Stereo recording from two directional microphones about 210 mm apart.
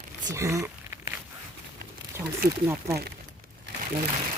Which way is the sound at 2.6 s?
15° right (ahead or behind).